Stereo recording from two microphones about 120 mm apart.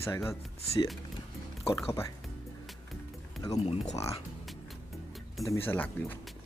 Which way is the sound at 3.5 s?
60° left (ahead or behind).